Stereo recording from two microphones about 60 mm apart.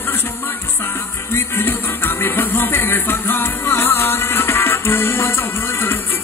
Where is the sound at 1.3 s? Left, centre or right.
Left.